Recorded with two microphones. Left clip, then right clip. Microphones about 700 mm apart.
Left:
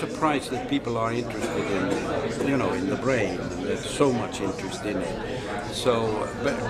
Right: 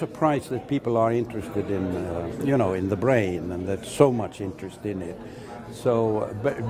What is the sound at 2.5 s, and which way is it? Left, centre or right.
A man's voice, right.